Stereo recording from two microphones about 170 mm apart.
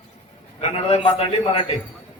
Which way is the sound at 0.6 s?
35° left (ahead or behind).